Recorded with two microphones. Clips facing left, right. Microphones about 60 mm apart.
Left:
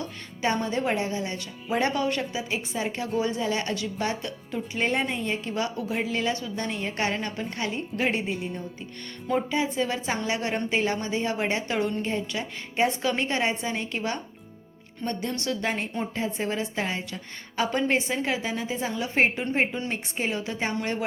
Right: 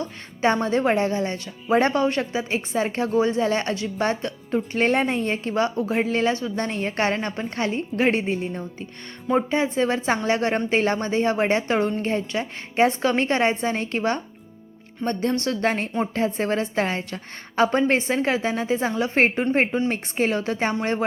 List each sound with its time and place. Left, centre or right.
0.0 s a woman's voice: right
4.7 s a woman's voice: right
17.6 s a woman's voice: right